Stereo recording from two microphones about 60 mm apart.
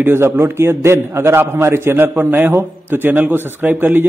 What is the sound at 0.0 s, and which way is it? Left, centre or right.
A man's voice, right.